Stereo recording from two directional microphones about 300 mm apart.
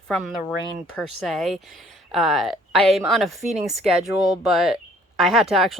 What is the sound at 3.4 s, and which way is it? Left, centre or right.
Speech, right.